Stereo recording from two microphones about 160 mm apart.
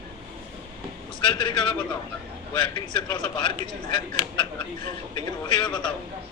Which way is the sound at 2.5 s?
30° left (ahead or behind).